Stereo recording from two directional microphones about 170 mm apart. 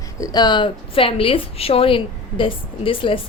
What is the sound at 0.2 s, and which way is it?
A woman's voice, 25° left (ahead or behind).